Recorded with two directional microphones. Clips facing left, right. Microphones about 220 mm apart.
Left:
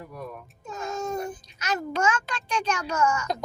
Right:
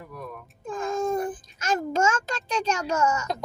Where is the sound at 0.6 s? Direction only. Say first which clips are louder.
Right 5 dB; 50° right (ahead or behind).